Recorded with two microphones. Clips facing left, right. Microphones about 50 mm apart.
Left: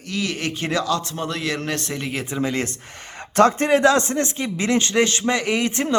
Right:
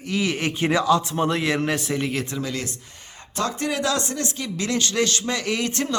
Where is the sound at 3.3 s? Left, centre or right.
Left.